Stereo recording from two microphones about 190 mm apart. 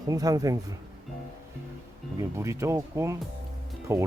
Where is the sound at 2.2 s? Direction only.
15° right (ahead or behind).